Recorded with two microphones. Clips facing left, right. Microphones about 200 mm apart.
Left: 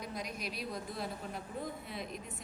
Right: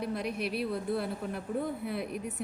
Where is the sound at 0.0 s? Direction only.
60° right (ahead or behind).